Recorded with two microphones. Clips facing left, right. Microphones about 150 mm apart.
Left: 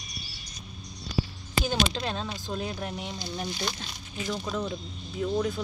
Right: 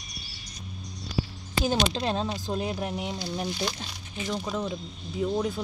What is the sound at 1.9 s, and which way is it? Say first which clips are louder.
Speech: right 4 dB; 25° right (ahead or behind).